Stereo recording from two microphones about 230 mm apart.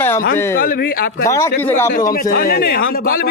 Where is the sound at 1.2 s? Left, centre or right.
Centre.